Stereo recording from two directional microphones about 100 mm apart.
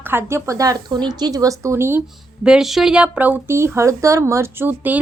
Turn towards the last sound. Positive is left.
turn(degrees=-20)  # may be behind; listen again after turning